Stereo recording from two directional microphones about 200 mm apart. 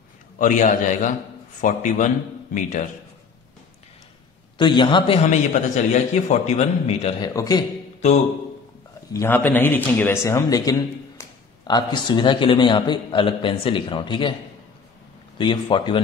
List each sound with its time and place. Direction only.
0.4 s a man's voice: 40° left (ahead or behind)
4.6 s a man's voice: 25° left (ahead or behind)
5.3 s a man's voice: 35° left (ahead or behind)
7.3 s a man's voice: 20° left (ahead or behind)
9.1 s a man's voice: 10° left (ahead or behind)
15.3 s a man's voice: 25° left (ahead or behind)